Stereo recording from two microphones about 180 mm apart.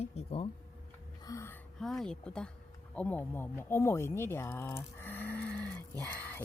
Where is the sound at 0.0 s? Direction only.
35° left (ahead or behind).